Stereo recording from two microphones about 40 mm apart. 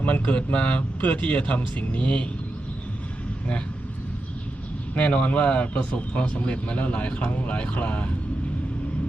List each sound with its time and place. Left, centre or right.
0.0 s speech: left
4.9 s speech: left